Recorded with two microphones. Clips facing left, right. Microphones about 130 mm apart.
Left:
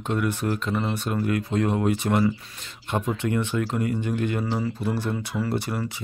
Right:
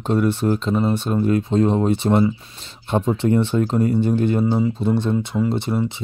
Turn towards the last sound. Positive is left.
turn(degrees=-25)  # may be behind; listen again after turning